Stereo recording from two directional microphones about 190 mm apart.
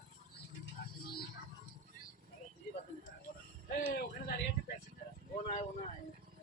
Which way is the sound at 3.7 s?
50° left (ahead or behind).